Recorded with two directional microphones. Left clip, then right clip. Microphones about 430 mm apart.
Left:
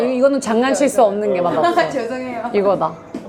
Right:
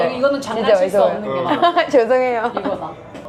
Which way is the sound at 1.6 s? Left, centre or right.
Right.